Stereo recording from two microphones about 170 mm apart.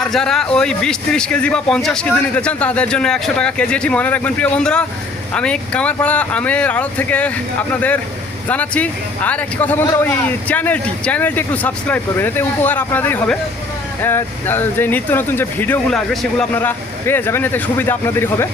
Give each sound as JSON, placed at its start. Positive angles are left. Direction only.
{"t": 0.1, "sound": "a man's voice", "side_deg": 5}